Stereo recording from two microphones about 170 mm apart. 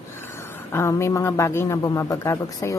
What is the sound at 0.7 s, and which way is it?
A woman's voice, 15° left (ahead or behind).